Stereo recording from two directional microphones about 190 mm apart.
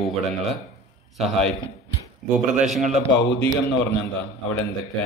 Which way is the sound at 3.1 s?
65° left (ahead or behind).